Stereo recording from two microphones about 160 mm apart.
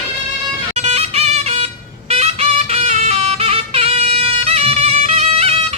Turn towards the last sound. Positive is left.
turn(degrees=-40)  # may be behind; listen again after turning